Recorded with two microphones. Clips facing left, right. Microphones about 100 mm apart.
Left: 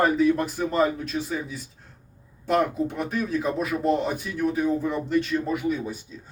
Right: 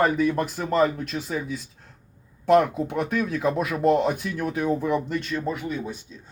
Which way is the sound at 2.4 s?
60° right (ahead or behind).